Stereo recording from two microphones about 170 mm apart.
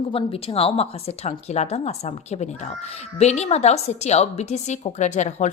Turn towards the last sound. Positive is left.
turn(degrees=45)  # may be behind; listen again after turning